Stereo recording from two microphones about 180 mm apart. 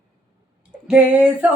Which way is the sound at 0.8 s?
5° right (ahead or behind).